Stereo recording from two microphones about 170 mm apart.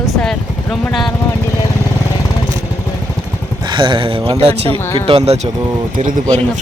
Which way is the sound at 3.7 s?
30° right (ahead or behind).